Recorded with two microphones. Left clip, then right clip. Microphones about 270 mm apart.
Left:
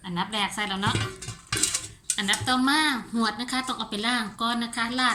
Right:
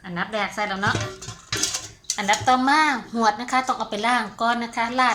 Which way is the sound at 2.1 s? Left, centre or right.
Centre.